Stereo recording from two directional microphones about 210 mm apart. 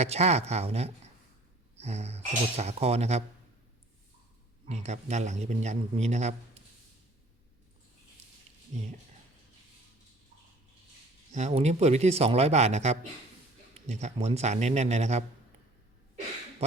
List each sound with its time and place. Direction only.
0.0 s speech: 30° right (ahead or behind)
4.7 s speech: 30° right (ahead or behind)
11.3 s speech: 35° right (ahead or behind)